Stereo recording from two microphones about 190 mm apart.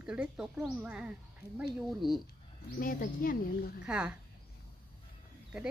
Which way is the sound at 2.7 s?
50° left (ahead or behind).